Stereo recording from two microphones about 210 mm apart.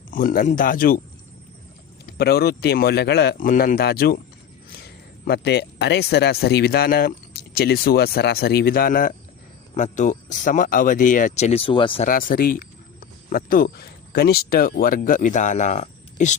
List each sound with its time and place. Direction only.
0.1 s speech: 40° left (ahead or behind)
2.0 s speech: 50° left (ahead or behind)
5.2 s speech: 50° left (ahead or behind); by 12.0 s 25° left (ahead or behind)
12.0 s speech: 40° left (ahead or behind)